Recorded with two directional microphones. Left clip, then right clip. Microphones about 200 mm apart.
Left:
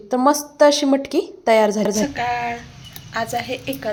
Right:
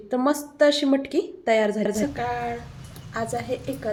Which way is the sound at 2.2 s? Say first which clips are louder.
Left 5 dB; 5° right (ahead or behind).